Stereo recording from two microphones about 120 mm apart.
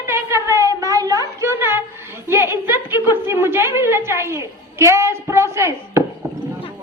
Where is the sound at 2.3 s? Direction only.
20° right (ahead or behind).